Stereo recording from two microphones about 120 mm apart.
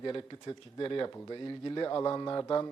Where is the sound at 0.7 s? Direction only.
40° left (ahead or behind).